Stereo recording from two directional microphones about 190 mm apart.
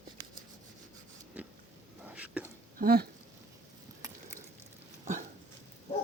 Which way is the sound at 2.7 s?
50° right (ahead or behind).